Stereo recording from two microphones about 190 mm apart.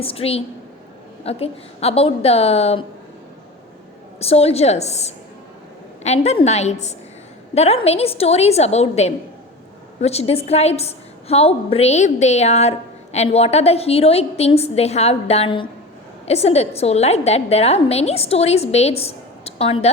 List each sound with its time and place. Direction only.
0.0 s a woman's voice: 30° left (ahead or behind)
4.2 s a woman's voice: 30° left (ahead or behind)